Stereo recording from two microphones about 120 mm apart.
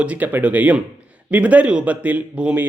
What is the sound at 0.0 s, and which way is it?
Speech, 10° right (ahead or behind).